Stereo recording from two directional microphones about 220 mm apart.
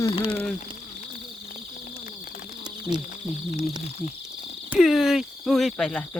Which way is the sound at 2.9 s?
35° left (ahead or behind).